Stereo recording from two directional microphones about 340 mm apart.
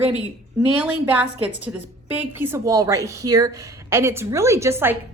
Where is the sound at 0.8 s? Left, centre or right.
Centre.